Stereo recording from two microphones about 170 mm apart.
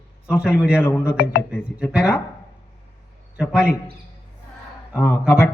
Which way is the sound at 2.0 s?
15° left (ahead or behind).